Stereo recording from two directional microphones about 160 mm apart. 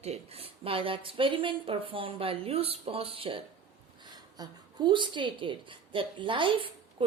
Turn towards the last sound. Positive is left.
turn(degrees=-30)  # may be behind; listen again after turning